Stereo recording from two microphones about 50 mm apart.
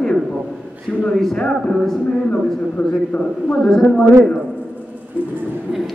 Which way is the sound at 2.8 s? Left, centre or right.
Centre.